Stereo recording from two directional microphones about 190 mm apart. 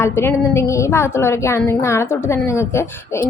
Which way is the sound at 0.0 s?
10° left (ahead or behind).